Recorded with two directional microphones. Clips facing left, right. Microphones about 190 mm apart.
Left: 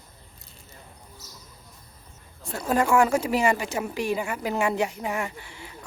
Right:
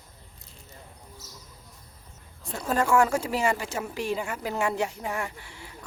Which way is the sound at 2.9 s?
15° left (ahead or behind).